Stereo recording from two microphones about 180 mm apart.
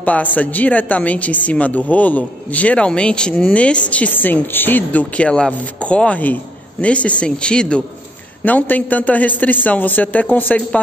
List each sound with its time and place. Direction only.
0.0 s speech: 10° left (ahead or behind)